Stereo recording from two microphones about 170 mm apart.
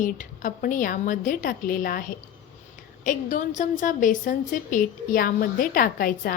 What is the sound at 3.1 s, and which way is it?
A woman's voice, 50° left (ahead or behind).